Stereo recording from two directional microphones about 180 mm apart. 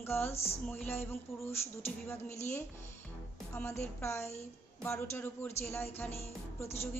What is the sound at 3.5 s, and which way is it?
A woman's voice, 15° left (ahead or behind).